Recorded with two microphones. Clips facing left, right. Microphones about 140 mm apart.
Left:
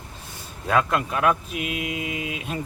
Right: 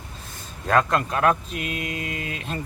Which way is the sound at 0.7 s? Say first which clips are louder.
Right 1 dB; 5° left (ahead or behind).